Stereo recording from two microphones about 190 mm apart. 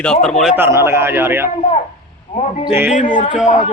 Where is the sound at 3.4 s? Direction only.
40° left (ahead or behind).